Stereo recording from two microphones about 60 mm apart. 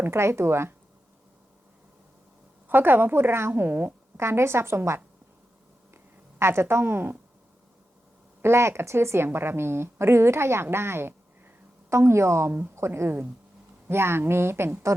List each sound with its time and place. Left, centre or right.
0.0 s speech: right
2.6 s a woman's voice: right
4.2 s speech: right
6.4 s speech: right
8.4 s a woman's voice: right